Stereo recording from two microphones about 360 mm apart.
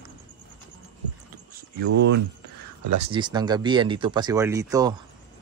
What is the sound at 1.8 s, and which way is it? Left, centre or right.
Speech, right.